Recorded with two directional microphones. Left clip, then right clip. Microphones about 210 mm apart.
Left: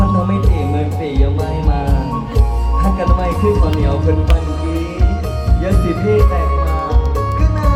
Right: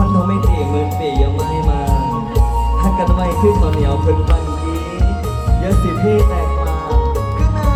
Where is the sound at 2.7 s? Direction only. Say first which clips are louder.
Left 2 dB; 40° right (ahead or behind).